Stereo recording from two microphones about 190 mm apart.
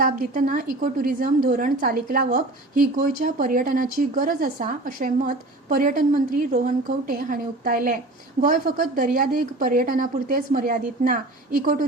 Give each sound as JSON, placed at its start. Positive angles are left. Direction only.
{"t": 0.0, "sound": "a woman's voice", "side_deg": -45}